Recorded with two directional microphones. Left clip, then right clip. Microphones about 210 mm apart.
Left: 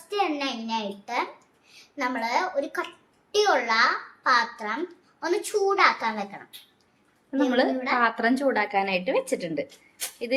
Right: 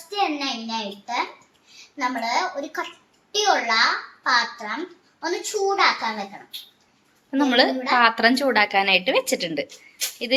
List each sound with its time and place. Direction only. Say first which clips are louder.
0.2 s a child's voice: right 3 dB; 25° left (ahead or behind)
7.3 s a woman's voice: right 4 dB; 10° right (ahead or behind)